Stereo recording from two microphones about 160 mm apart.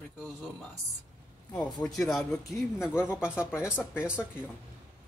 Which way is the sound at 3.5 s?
15° left (ahead or behind).